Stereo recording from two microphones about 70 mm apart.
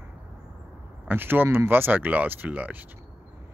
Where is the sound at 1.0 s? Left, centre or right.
Right.